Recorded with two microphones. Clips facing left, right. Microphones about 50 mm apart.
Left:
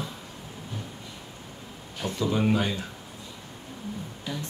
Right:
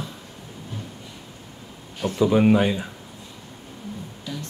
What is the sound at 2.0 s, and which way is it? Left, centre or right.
Speech, right.